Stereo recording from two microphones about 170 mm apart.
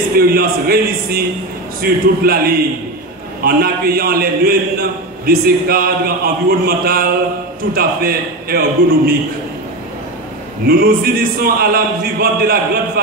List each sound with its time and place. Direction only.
0.2 s a man's voice: 60° right (ahead or behind)
10.7 s a man's voice: 60° right (ahead or behind)